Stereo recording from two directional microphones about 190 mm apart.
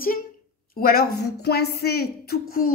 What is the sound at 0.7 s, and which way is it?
A woman's voice, 55° left (ahead or behind).